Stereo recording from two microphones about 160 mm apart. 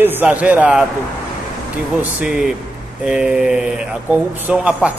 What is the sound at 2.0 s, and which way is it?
Speech, 5° right (ahead or behind).